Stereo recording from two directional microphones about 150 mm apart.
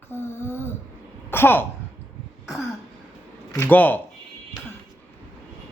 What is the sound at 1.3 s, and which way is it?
Speech, 15° left (ahead or behind).